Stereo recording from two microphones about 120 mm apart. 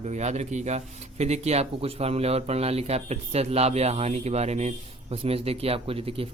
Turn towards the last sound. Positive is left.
turn(degrees=-50)  # may be behind; listen again after turning